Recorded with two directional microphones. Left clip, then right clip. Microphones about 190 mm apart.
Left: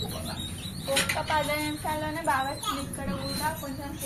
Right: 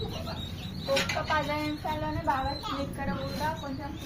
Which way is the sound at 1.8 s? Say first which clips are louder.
Left 2 dB; centre (ahead or behind).